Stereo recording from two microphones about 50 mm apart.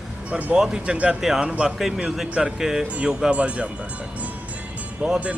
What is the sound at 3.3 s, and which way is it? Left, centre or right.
Speech, right.